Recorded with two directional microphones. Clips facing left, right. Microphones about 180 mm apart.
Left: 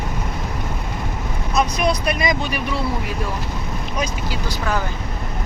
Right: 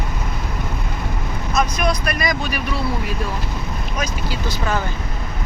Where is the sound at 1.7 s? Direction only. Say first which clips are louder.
Left 1 dB; 30° left (ahead or behind).